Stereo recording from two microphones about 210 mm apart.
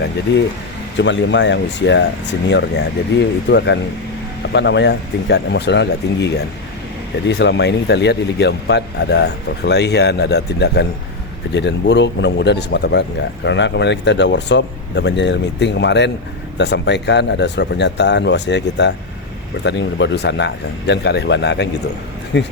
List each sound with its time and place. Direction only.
0.3 s a man's voice: 55° left (ahead or behind)